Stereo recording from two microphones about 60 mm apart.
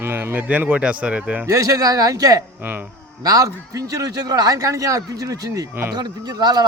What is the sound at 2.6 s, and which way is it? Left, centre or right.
Speech, right.